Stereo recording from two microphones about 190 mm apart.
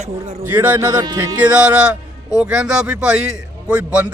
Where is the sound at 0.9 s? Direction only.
25° right (ahead or behind).